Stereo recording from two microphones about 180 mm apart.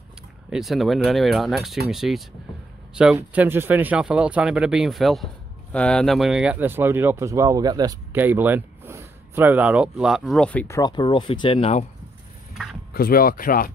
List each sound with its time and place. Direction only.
0.5 s speech: centre (ahead or behind)
3.2 s speech: 10° right (ahead or behind)
8.1 s speech: 10° right (ahead or behind); by 10.8 s 10° left (ahead or behind)
10.8 s speech: 25° left (ahead or behind)
12.9 s speech: 55° left (ahead or behind)